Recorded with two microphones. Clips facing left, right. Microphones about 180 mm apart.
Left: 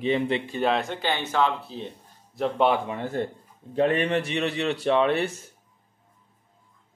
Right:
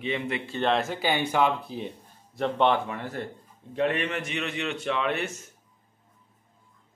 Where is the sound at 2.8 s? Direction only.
20° left (ahead or behind).